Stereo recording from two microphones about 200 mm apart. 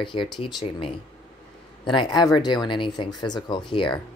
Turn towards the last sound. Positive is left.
turn(degrees=25)  # may be behind; listen again after turning